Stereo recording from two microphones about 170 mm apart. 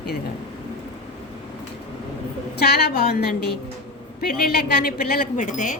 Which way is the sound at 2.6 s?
65° left (ahead or behind).